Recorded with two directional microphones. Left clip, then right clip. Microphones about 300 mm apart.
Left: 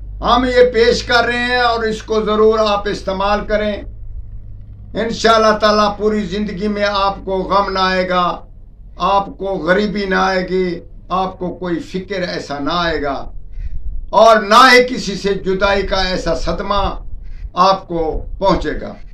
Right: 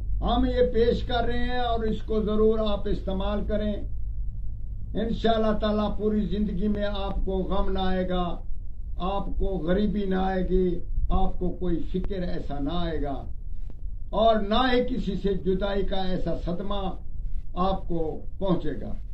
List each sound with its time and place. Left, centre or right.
0.2 s a man's voice: left
4.9 s a man's voice: left